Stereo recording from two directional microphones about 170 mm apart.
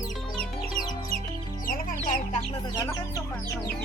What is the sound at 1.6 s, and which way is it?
Chicken, 55° left (ahead or behind).